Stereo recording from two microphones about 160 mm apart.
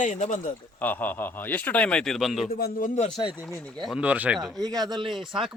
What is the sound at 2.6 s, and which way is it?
Speech, 60° left (ahead or behind).